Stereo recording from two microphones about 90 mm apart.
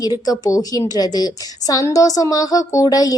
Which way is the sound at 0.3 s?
40° left (ahead or behind).